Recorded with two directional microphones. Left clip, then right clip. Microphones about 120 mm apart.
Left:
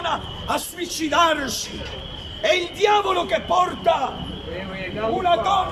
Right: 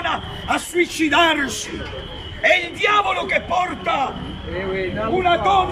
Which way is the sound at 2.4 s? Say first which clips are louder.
Right 3 dB; 45° left (ahead or behind).